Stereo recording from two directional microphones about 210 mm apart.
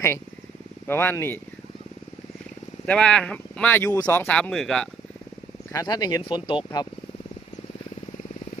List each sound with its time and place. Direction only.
0.9 s speech: 10° left (ahead or behind)
2.8 s speech: 5° left (ahead or behind)
5.7 s speech: 20° left (ahead or behind)